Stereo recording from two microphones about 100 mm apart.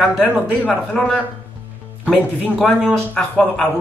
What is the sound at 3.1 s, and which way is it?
Speech, 10° left (ahead or behind).